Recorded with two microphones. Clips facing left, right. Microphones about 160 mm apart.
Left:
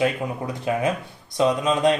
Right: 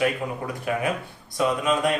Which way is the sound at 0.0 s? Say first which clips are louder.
Left 2 dB; 20° left (ahead or behind).